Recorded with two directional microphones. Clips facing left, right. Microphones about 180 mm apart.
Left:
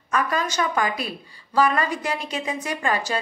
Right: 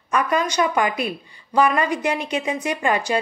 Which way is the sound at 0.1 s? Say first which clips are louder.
Right 3 dB; 15° right (ahead or behind).